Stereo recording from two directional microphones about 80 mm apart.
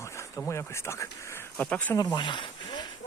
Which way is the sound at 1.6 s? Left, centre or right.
Centre.